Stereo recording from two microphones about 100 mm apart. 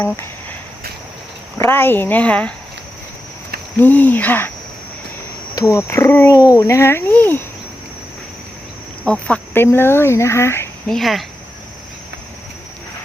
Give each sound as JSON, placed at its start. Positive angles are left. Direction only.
{"t": 1.5, "sound": "speech", "side_deg": 25}
{"t": 3.8, "sound": "speech", "side_deg": 20}
{"t": 5.7, "sound": "speech", "side_deg": 25}
{"t": 6.3, "sound": "a child's voice", "side_deg": 40}
{"t": 6.6, "sound": "speech", "side_deg": 25}
{"t": 9.0, "sound": "speech", "side_deg": 10}
{"t": 10.8, "sound": "speech", "side_deg": 0}